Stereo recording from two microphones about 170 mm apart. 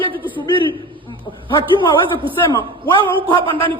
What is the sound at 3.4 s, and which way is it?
Speech, 30° right (ahead or behind).